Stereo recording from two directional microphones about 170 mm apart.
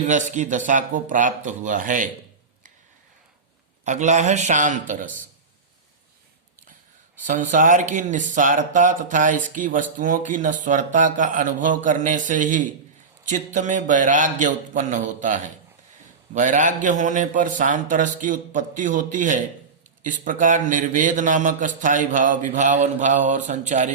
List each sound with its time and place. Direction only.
0.1 s speech: 45° right (ahead or behind)
3.8 s speech: 45° right (ahead or behind)
7.2 s speech: 50° right (ahead or behind)